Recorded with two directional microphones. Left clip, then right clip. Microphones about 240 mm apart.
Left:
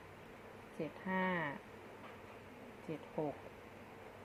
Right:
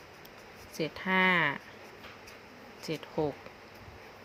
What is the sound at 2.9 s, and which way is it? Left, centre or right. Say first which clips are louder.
Speech: right 9 dB; right.